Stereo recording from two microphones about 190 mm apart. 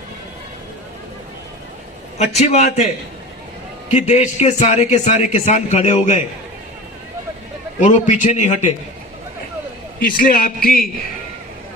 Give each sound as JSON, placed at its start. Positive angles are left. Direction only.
{"t": 2.1, "sound": "a man's voice", "side_deg": 35}
{"t": 3.9, "sound": "a man's voice", "side_deg": 40}
{"t": 7.8, "sound": "a man's voice", "side_deg": 40}
{"t": 9.9, "sound": "a man's voice", "side_deg": 50}